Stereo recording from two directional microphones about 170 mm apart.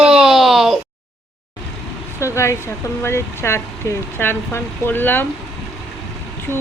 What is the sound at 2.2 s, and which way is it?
Speech, 15° left (ahead or behind).